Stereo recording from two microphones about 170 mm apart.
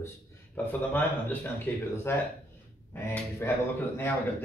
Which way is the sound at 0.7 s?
10° left (ahead or behind).